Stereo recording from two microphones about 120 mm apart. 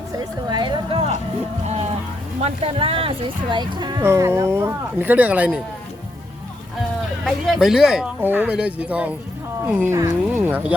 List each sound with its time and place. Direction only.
0.4 s music: 40° right (ahead or behind)
2.4 s speech: 50° right (ahead or behind)
4.0 s speech: 20° right (ahead or behind)
7.3 s speech: centre (ahead or behind)
8.2 s speech: 15° right (ahead or behind)